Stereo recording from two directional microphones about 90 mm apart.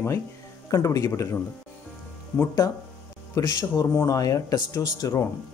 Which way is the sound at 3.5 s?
45° left (ahead or behind).